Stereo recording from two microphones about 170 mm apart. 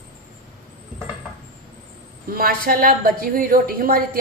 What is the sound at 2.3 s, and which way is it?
A woman's voice, 60° right (ahead or behind).